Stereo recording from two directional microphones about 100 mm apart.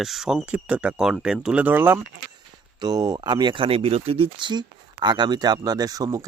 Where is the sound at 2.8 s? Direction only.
40° right (ahead or behind).